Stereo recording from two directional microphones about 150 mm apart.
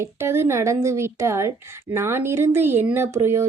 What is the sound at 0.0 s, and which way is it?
A woman's voice, 15° right (ahead or behind).